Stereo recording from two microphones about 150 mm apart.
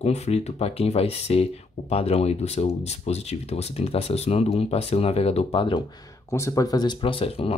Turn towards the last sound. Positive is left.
turn(degrees=40)  # may be behind; listen again after turning